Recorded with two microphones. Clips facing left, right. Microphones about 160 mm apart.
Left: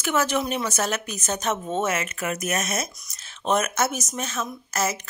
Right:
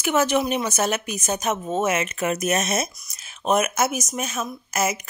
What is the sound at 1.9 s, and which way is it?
Speech, 20° right (ahead or behind).